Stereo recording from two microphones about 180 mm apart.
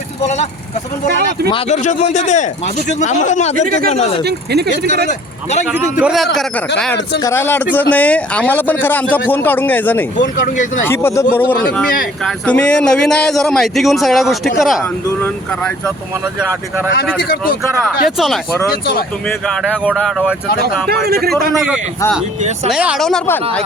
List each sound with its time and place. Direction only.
1.5 s a man's voice: 35° left (ahead or behind)
4.2 s speech: 65° right (ahead or behind)
5.6 s speech: 5° right (ahead or behind)
7.2 s speech: 15° left (ahead or behind)
10.2 s speech: 45° left (ahead or behind)
10.8 s speech: 15° left (ahead or behind)
14.8 s speech: 10° left (ahead or behind)
17.2 s speech: 55° left (ahead or behind)
18.2 s speech: centre (ahead or behind)
18.7 s speech: 55° left (ahead or behind)
19.3 s speech: 5° left (ahead or behind)
22.4 s speech: 40° right (ahead or behind)
22.7 s speech: 5° right (ahead or behind)